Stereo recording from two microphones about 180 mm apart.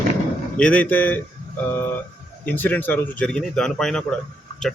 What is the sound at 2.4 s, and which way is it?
Speech, 10° left (ahead or behind).